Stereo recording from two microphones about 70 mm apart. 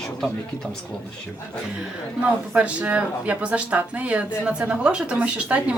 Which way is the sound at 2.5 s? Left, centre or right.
Right.